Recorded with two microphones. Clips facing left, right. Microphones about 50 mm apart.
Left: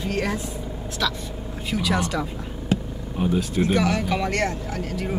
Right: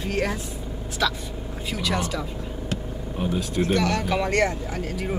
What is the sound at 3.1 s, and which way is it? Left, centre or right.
Speech, centre.